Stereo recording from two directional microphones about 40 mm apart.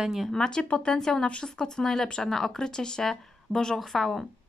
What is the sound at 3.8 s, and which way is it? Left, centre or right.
Speech, centre.